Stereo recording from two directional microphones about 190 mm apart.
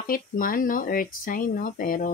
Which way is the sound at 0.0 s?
45° left (ahead or behind).